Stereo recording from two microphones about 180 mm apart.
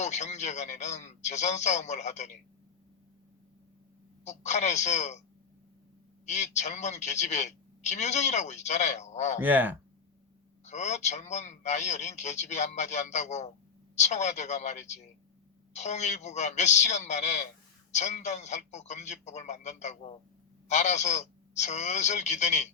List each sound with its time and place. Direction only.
0.0 s a man's voice: 40° left (ahead or behind)
4.2 s a man's voice: 40° left (ahead or behind)
6.2 s a man's voice: 40° left (ahead or behind)
9.4 s speech: 10° right (ahead or behind)
10.7 s a man's voice: 40° left (ahead or behind)